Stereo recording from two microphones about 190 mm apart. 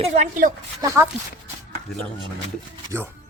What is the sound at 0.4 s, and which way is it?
Speech, 45° right (ahead or behind).